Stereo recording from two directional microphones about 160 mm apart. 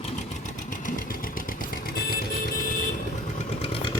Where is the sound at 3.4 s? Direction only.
40° left (ahead or behind).